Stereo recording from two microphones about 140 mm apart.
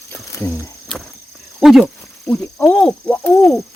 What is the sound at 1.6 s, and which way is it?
Speech, centre (ahead or behind).